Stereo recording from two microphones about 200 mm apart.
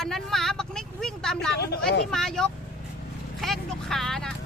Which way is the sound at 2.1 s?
Centre (ahead or behind).